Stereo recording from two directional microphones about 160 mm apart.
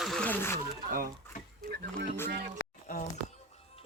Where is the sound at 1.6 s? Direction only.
85° right.